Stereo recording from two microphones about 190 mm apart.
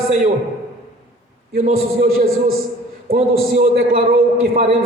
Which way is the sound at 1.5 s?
50° right (ahead or behind).